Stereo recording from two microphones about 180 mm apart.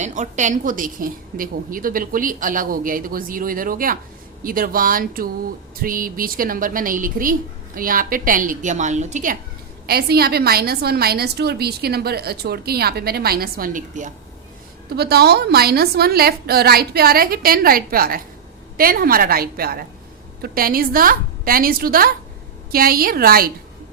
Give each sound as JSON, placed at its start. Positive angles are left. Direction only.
{"t": 0.0, "sound": "a woman's voice", "side_deg": -40}
{"t": 9.8, "sound": "a woman's voice", "side_deg": -60}
{"t": 14.8, "sound": "a woman's voice", "side_deg": -60}